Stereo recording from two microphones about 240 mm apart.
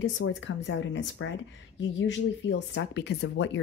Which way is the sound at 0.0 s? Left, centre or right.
Left.